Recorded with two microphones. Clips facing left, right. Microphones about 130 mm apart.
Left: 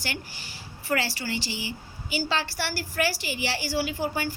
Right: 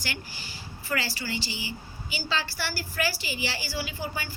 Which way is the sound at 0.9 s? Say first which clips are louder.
Left 3 dB; 60° left (ahead or behind).